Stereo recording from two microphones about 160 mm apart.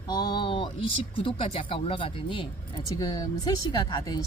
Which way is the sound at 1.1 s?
35° left (ahead or behind).